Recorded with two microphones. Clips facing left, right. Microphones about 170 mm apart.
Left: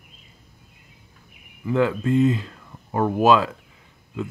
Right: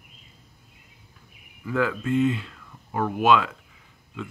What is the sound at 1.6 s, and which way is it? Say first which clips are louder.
Speech: left 4 dB; 25° left (ahead or behind).